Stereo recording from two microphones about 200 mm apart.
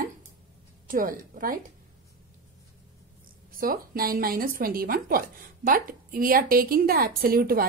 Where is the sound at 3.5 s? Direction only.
45° right (ahead or behind).